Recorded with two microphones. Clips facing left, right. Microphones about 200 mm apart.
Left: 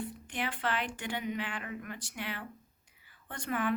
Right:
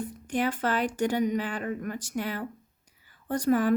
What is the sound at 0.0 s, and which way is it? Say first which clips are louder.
Speech: right 9 dB; 40° right (ahead or behind).